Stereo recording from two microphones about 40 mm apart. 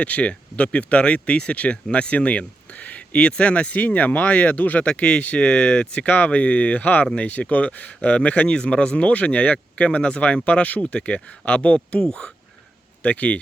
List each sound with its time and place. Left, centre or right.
0.0 s speech: left